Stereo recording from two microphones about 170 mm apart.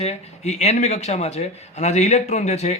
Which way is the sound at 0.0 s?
40° left (ahead or behind).